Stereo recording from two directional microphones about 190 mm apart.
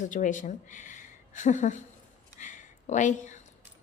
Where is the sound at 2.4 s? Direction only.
40° left (ahead or behind).